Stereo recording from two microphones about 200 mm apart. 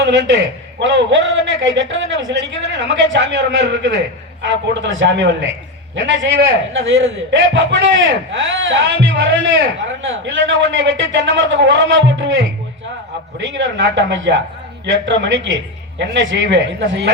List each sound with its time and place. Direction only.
0.0 s a man's voice: 60° right (ahead or behind)
13.4 s a man's voice: 60° right (ahead or behind)